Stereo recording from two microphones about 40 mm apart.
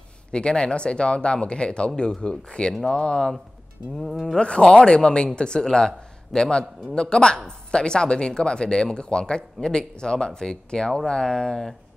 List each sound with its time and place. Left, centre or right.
0.3 s speech: left
4.4 s speech: left